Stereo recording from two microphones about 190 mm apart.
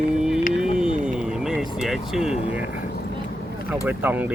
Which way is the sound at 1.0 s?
5° right (ahead or behind).